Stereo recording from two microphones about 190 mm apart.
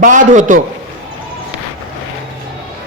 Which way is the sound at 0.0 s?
45° right (ahead or behind).